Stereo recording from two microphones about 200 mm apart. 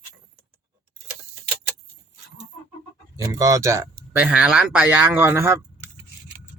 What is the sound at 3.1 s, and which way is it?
Speech, 15° right (ahead or behind).